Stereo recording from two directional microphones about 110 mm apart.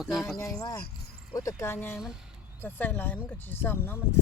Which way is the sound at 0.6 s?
35° left (ahead or behind).